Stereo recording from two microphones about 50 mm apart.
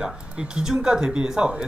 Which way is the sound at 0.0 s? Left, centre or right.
Centre.